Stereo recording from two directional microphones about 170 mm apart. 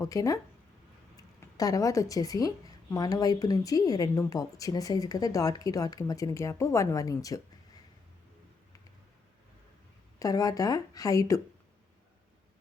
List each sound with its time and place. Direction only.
0.0 s speech: 20° left (ahead or behind)
10.2 s speech: 20° left (ahead or behind)